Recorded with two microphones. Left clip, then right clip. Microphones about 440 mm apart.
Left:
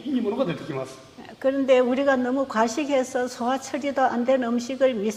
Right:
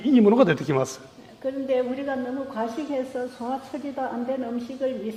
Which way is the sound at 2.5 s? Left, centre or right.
Left.